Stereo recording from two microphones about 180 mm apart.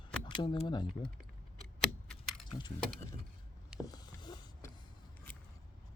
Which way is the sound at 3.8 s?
20° left (ahead or behind).